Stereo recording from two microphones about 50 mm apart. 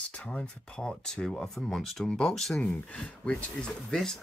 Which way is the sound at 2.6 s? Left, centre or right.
Left.